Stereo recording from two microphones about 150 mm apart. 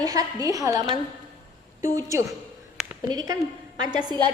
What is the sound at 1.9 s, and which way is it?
A woman's voice, 20° right (ahead or behind).